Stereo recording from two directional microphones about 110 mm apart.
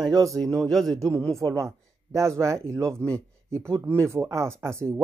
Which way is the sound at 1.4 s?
30° right (ahead or behind).